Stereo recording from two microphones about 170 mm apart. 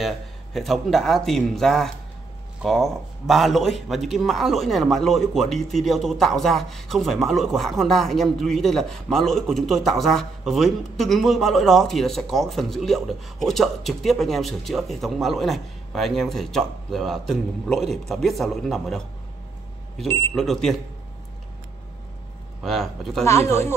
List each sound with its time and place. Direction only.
0.0 s a man's voice: centre (ahead or behind)
20.1 s speech: 15° left (ahead or behind)
20.3 s a man's voice: centre (ahead or behind)
22.6 s a man's voice: centre (ahead or behind)
23.2 s speech: 15° left (ahead or behind)